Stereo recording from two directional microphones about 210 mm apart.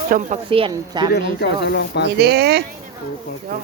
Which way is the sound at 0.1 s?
35° right (ahead or behind).